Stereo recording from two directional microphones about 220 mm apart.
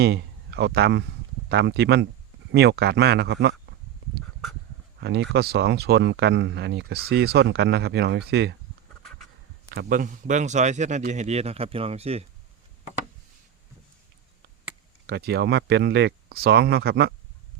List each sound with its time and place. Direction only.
0.0 s speech: 50° right (ahead or behind)
4.9 s speech: 50° right (ahead or behind)
9.7 s speech: 40° right (ahead or behind)
15.0 s speech: 45° right (ahead or behind)